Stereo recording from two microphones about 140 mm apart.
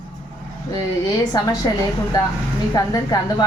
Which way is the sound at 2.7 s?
25° left (ahead or behind).